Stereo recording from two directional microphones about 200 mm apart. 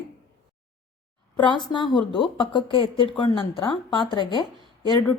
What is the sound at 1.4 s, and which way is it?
A woman's voice, 25° left (ahead or behind).